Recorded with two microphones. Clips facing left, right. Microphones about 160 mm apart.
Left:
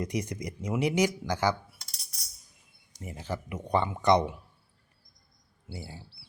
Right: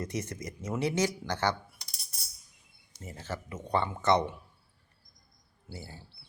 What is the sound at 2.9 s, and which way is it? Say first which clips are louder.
Speech: left 3 dB; 15° left (ahead or behind).